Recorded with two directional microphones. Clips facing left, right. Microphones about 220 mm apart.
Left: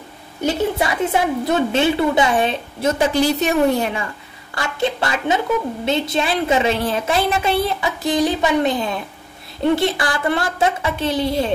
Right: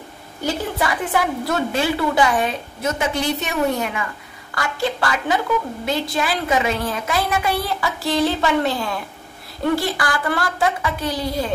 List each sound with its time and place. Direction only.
0.4 s a woman's voice: 25° left (ahead or behind)